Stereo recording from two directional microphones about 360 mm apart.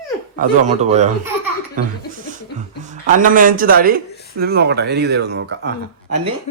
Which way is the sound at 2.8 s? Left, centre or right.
Right.